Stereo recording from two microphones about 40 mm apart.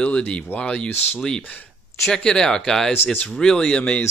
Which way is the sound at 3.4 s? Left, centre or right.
Centre.